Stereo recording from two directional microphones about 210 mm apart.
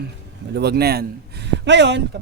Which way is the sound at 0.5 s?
50° right (ahead or behind).